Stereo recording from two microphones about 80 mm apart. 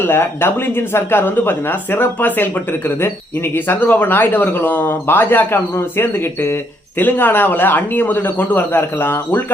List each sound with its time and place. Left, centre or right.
0.0 s speech: left